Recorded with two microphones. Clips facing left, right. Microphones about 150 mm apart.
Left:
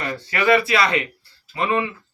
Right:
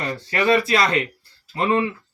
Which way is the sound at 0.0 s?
30° right (ahead or behind).